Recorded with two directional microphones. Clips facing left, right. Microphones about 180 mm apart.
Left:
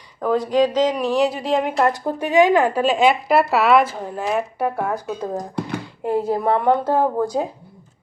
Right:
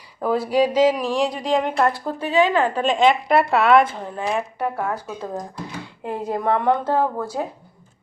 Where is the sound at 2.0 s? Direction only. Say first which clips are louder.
Left 3 dB; 15° left (ahead or behind).